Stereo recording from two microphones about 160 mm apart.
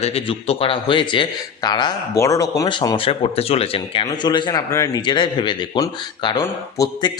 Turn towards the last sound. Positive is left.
turn(degrees=25)  # may be behind; listen again after turning